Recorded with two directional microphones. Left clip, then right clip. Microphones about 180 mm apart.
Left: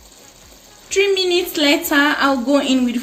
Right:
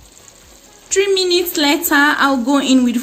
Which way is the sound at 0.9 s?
60° right (ahead or behind).